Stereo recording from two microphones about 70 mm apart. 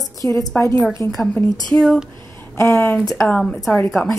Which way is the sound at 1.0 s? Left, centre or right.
Left.